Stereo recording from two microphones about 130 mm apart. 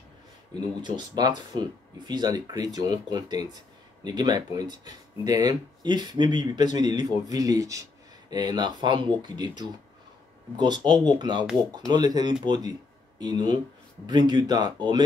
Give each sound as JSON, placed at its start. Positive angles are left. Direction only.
{"t": 0.8, "sound": "speech", "side_deg": -35}